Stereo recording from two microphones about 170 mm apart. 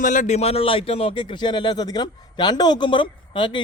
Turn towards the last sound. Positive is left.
turn(degrees=30)  # may be behind; listen again after turning